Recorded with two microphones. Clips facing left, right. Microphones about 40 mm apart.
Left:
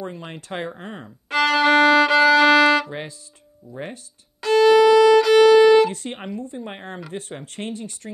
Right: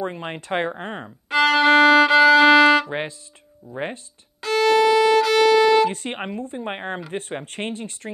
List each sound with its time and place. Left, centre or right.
0.0 s speech: right
1.3 s violin: centre
2.9 s speech: right
4.5 s violin: centre
5.3 s music: centre
5.9 s speech: right